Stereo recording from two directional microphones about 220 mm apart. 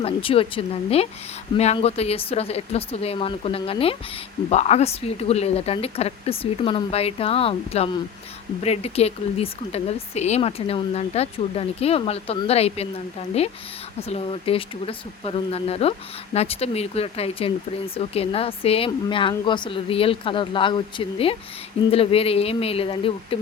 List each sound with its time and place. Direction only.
0.0 s speech: 25° left (ahead or behind)
14.1 s speech: 25° left (ahead or behind)